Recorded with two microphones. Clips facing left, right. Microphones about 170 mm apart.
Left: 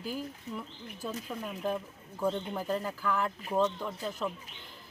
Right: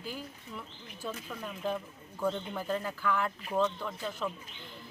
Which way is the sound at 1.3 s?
15° left (ahead or behind).